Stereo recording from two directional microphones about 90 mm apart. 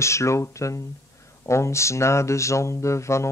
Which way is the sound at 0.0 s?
35° left (ahead or behind).